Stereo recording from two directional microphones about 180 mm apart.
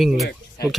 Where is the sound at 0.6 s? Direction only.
60° left (ahead or behind).